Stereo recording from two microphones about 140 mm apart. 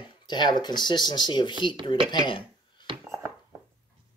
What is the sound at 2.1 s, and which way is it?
Dishes, 35° left (ahead or behind).